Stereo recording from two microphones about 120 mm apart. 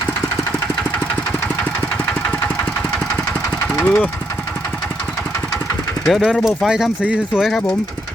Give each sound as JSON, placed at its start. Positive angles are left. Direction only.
{"t": 3.7, "sound": "engine", "side_deg": 15}
{"t": 6.1, "sound": "speech", "side_deg": 0}